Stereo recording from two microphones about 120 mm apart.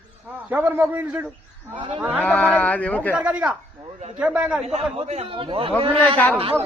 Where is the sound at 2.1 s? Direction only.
10° left (ahead or behind).